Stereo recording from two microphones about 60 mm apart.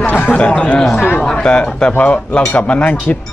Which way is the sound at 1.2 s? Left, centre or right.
Centre.